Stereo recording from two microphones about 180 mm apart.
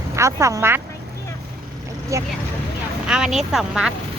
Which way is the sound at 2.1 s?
15° right (ahead or behind).